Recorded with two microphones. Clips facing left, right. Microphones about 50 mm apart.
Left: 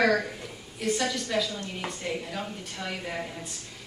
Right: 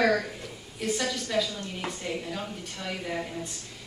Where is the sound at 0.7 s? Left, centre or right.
Centre.